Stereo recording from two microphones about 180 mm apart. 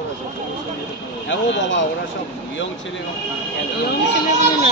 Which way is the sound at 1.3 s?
90° left.